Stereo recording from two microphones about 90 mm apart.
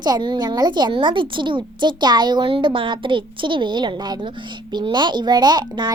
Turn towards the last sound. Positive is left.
turn(degrees=-50)  # may be behind; listen again after turning